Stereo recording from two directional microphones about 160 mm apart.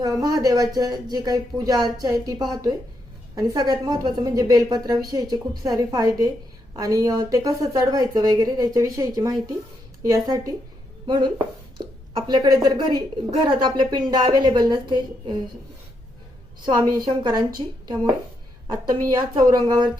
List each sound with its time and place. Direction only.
0.0 s a woman's voice: 20° right (ahead or behind)
17.1 s a woman's voice: 25° right (ahead or behind)